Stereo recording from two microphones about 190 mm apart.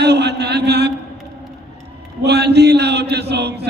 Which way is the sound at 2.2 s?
60° right (ahead or behind).